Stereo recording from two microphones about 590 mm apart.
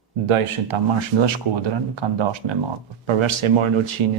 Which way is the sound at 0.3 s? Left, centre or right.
Right.